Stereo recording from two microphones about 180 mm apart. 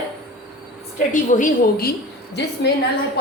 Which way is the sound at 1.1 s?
45° left (ahead or behind).